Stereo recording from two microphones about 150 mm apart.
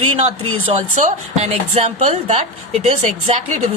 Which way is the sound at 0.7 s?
50° right (ahead or behind).